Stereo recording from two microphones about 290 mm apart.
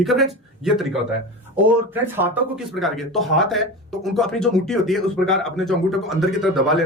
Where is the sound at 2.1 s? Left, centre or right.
Centre.